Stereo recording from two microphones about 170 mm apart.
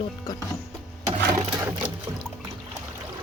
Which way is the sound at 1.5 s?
15° right (ahead or behind).